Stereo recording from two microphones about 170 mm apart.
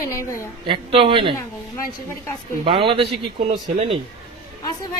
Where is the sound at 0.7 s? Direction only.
30° right (ahead or behind).